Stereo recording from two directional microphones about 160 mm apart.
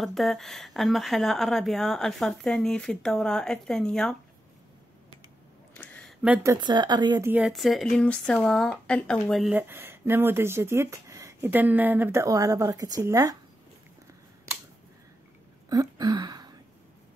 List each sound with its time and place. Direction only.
0.0 s speech: centre (ahead or behind)
5.8 s a sound: 5° left (ahead or behind)
6.2 s speech: 15° right (ahead or behind)
6.6 s speech: 30° right (ahead or behind)
7.2 s speech: 5° right (ahead or behind)
15.7 s a sound: 25° right (ahead or behind)